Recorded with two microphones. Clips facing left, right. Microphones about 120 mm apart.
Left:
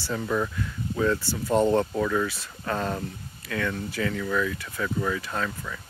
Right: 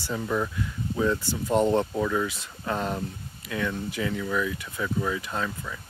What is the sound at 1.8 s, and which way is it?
Speech, 5° right (ahead or behind).